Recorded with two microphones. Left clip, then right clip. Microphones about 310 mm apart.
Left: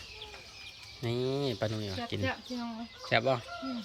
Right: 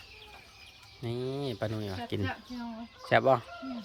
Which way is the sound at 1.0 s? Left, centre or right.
Centre.